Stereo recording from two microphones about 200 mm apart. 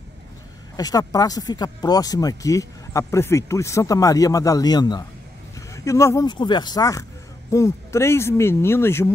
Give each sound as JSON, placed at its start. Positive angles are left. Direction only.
{"t": 0.7, "sound": "speech", "side_deg": 20}